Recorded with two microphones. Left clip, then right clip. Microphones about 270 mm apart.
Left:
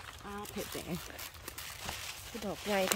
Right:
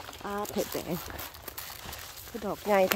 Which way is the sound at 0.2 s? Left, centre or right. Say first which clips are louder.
Right 11 dB; right.